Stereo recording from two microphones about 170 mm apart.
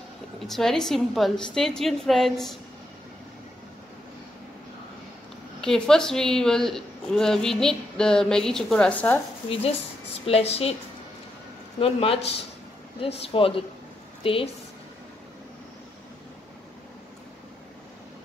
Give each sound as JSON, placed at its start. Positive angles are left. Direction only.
{"t": 0.4, "sound": "a woman's voice", "side_deg": 0}
{"t": 5.6, "sound": "a woman's voice", "side_deg": 5}
{"t": 9.5, "sound": "a woman's voice", "side_deg": 35}
{"t": 11.8, "sound": "a woman's voice", "side_deg": 35}